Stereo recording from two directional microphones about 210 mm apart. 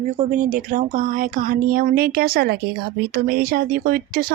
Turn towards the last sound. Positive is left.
turn(degrees=-40)  # may be behind; listen again after turning